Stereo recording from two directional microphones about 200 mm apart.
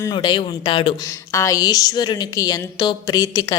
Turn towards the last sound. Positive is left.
turn(degrees=20)  # may be behind; listen again after turning